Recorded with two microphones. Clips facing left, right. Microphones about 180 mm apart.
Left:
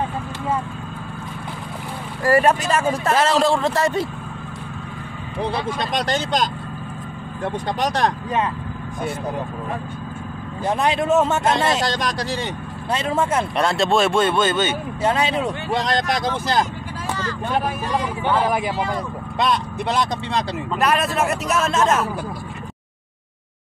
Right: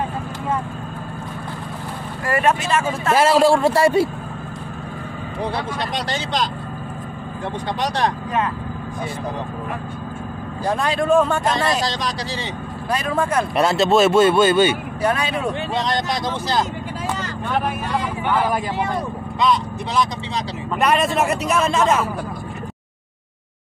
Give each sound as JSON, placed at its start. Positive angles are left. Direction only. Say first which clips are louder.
{"t": 2.2, "sound": "speech", "louder": "left 3 dB", "side_deg": 35}
{"t": 3.2, "sound": "speech", "louder": "right 6 dB", "side_deg": -10}
{"t": 6.0, "sound": "speech", "louder": "left 3 dB", "side_deg": 45}
{"t": 10.6, "sound": "speech", "louder": "left 1 dB", "side_deg": 20}
{"t": 11.9, "sound": "speech", "louder": "left 2 dB", "side_deg": 55}
{"t": 12.9, "sound": "speech", "louder": "even", "side_deg": 25}
{"t": 13.6, "sound": "speech", "louder": "right 4 dB", "side_deg": -5}
{"t": 15.0, "sound": "speech", "louder": "left 5 dB", "side_deg": 25}
{"t": 19.3, "sound": "speech", "louder": "right 2 dB", "side_deg": 60}
{"t": 20.8, "sound": "speech", "louder": "right 2 dB", "side_deg": 0}